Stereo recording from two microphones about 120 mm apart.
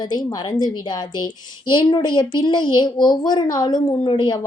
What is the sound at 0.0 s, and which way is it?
Speech, 35° left (ahead or behind).